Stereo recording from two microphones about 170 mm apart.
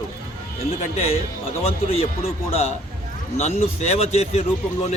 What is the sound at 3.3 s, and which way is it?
Speech, 40° left (ahead or behind).